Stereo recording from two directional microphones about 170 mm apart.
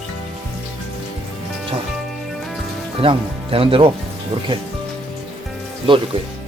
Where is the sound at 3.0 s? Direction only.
35° right (ahead or behind).